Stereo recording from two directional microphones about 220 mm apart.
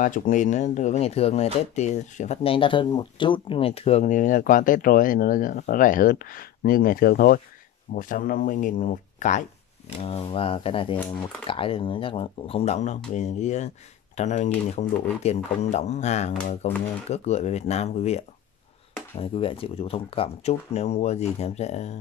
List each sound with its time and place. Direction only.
0.0 s speech: 35° left (ahead or behind)
9.9 s speech: 25° left (ahead or behind)